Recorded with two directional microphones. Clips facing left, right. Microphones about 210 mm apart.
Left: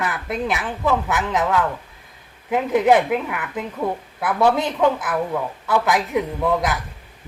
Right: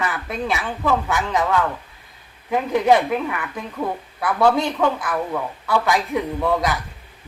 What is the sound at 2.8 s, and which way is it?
Speech, 10° left (ahead or behind).